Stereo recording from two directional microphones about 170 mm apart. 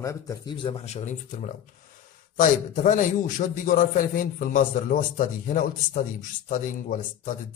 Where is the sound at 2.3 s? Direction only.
50° left (ahead or behind).